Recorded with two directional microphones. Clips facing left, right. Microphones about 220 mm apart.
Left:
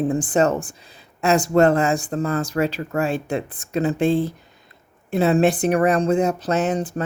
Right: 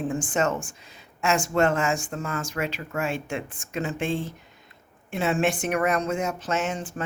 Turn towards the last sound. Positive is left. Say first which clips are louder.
# left 7 dB
turn(degrees=40)  # may be behind; listen again after turning